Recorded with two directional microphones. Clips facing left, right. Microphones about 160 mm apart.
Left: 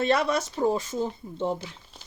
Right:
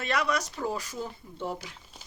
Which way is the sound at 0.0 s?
30° left (ahead or behind).